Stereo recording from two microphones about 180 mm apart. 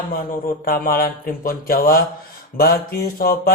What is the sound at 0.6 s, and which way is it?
Speech, 55° left (ahead or behind).